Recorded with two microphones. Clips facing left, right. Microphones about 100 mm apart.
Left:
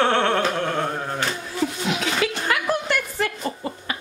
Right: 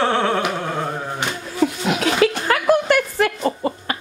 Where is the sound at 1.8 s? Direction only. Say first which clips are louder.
Right 8 dB; 55° right (ahead or behind).